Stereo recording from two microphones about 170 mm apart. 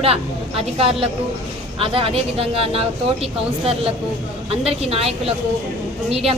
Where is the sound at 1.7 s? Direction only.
30° right (ahead or behind).